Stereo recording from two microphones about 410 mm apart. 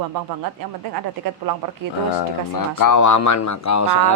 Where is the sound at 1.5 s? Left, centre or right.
Right.